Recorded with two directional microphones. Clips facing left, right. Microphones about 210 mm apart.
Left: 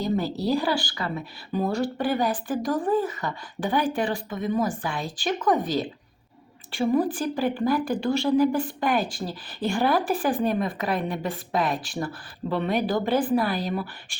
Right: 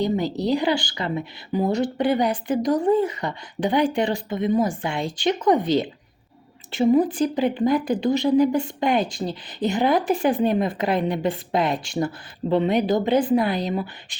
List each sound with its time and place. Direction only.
0.0 s a woman's voice: 20° right (ahead or behind)